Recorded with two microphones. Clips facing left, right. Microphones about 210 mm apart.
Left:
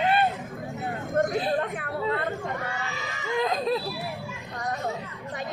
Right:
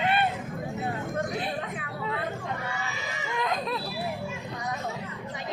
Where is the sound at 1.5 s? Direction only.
45° left (ahead or behind).